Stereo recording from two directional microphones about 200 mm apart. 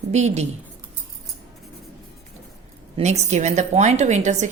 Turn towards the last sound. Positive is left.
turn(degrees=-35)  # may be behind; listen again after turning